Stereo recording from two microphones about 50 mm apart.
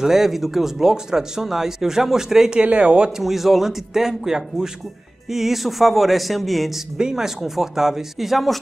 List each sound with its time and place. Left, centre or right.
0.0 s speech: centre
2.6 s speech: right
3.2 s speech: centre
5.3 s a sound: centre
7.0 s speech: centre